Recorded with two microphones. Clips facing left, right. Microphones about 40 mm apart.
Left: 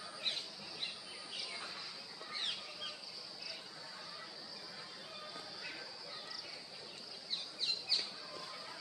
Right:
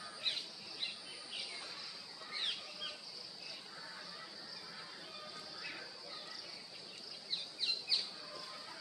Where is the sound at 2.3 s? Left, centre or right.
Centre.